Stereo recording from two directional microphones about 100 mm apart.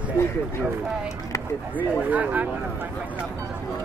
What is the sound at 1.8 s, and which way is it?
Speech, 15° right (ahead or behind).